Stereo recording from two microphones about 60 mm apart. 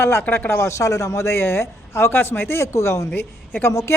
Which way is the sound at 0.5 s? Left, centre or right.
Left.